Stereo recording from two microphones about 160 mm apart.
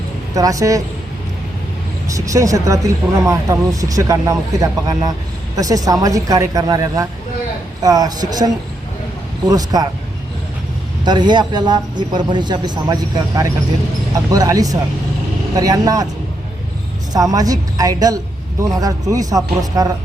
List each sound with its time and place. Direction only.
0.3 s speech: 20° right (ahead or behind)
2.0 s speech: 20° right (ahead or behind)
11.0 s speech: 30° right (ahead or behind)
17.1 s speech: 20° right (ahead or behind)